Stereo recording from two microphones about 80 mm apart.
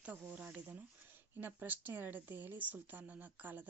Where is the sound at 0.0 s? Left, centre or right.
Right.